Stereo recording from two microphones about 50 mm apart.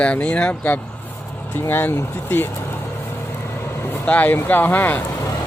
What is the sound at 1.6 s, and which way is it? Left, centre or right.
Speech, left.